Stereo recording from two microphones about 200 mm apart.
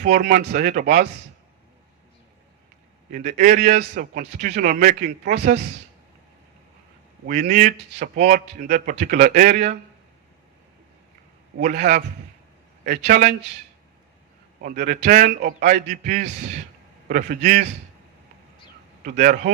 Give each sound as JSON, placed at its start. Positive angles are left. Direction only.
{"t": 0.0, "sound": "speech", "side_deg": -40}
{"t": 3.1, "sound": "speech", "side_deg": -45}
{"t": 7.3, "sound": "speech", "side_deg": -45}
{"t": 11.5, "sound": "a man's voice", "side_deg": -45}
{"t": 14.6, "sound": "speech", "side_deg": -40}
{"t": 19.0, "sound": "speech", "side_deg": -45}